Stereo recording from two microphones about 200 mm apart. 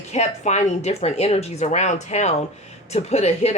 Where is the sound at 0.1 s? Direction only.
35° left (ahead or behind).